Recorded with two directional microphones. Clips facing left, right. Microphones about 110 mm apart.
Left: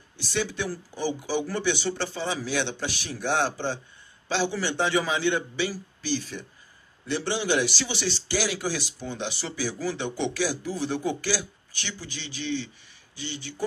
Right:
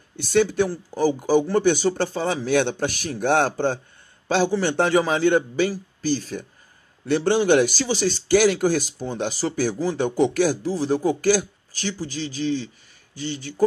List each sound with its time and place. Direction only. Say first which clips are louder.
0.2 s a man's voice: right 10 dB; 50° right (ahead or behind)
10.6 s speech: right 6 dB; 35° right (ahead or behind)